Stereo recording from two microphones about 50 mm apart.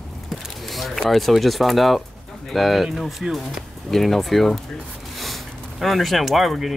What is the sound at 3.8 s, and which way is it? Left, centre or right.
Speech, centre.